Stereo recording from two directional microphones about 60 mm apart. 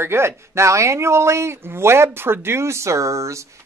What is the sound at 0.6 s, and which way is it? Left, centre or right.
Speech, right.